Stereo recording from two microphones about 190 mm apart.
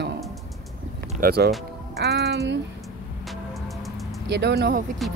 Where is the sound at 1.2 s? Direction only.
55° right (ahead or behind).